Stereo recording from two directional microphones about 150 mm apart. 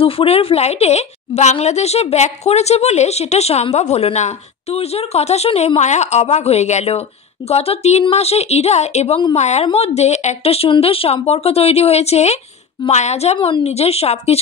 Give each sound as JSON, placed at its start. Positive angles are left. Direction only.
{"t": 0.0, "sound": "a woman's voice", "side_deg": 40}